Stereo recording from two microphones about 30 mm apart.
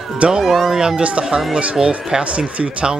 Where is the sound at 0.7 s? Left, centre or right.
Right.